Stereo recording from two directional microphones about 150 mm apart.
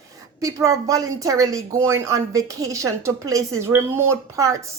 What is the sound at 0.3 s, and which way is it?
A woman's voice, 25° right (ahead or behind).